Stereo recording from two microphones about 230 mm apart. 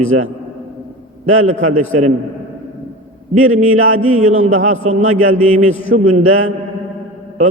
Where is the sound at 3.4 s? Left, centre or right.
Right.